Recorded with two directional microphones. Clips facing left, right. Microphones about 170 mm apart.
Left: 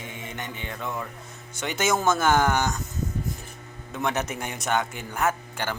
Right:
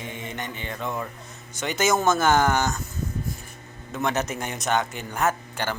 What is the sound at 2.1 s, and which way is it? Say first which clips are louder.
Speech: even; 10° left (ahead or behind).